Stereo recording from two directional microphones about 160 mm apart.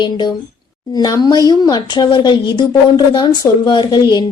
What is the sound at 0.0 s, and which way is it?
A woman's voice, 25° left (ahead or behind).